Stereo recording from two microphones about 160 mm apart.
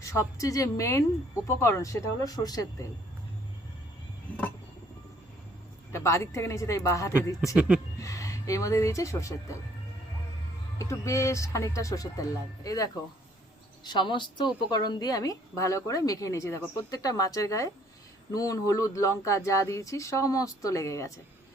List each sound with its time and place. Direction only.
0.0 s a woman's voice: 20° left (ahead or behind)
5.9 s a woman's voice: 20° left (ahead or behind)
7.4 s speech: 5° right (ahead or behind)
7.9 s speech: 20° left (ahead or behind)
10.8 s a woman's voice: 20° left (ahead or behind)